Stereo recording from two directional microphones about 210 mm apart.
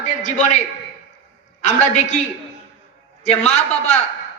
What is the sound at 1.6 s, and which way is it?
Speech, 35° left (ahead or behind).